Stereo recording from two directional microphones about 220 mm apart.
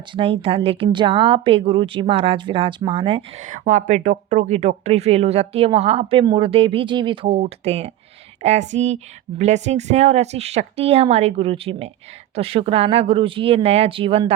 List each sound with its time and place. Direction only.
0.1 s speech: 25° right (ahead or behind)